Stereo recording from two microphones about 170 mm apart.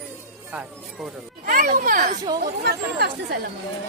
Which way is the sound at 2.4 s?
70° right (ahead or behind).